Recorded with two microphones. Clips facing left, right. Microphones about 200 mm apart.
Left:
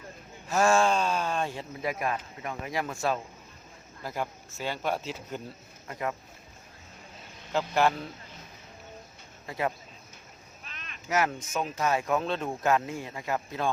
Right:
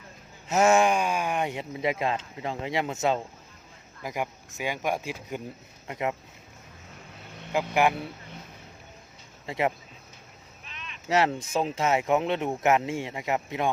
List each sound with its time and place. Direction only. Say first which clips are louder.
0.4 s speech: right 3 dB; 20° right (ahead or behind)
7.5 s speech: right 2 dB; 15° right (ahead or behind)
9.5 s speech: right 4 dB; 25° right (ahead or behind)
10.6 s a sound: right 3 dB; 45° left (ahead or behind)
11.1 s speech: right 4 dB; 30° right (ahead or behind)